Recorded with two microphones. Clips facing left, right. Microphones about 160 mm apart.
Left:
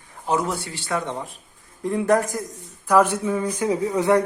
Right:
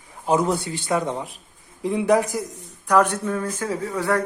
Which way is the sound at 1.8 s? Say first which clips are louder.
Right 1 dB; centre (ahead or behind).